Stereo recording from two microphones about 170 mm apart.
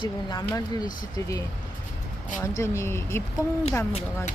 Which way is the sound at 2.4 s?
15° left (ahead or behind).